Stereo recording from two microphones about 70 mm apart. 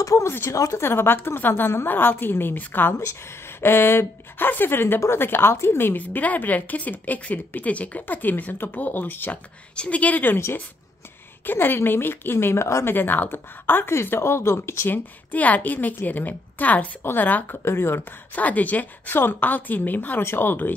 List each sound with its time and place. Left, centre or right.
0.0 s a woman's voice: left
10.3 s a woman's voice: left
12.9 s a woman's voice: left
15.3 s speech: left